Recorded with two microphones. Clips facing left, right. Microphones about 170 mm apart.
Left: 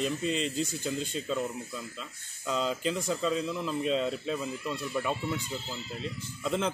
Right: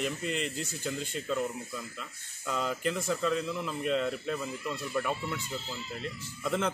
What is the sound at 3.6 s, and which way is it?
Speech, 25° left (ahead or behind).